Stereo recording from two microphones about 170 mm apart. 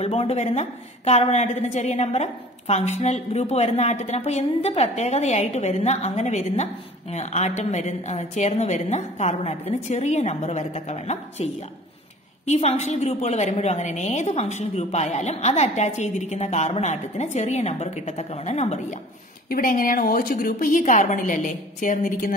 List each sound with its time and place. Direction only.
0.0 s a woman's voice: 40° left (ahead or behind)
12.4 s a woman's voice: 40° left (ahead or behind)
19.5 s a woman's voice: 55° left (ahead or behind)